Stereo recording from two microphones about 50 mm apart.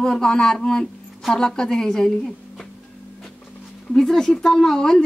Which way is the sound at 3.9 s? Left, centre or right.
Centre.